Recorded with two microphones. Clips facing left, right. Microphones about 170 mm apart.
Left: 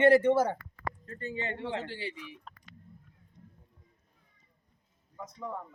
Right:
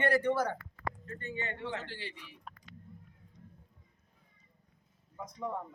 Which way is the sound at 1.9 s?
10° left (ahead or behind).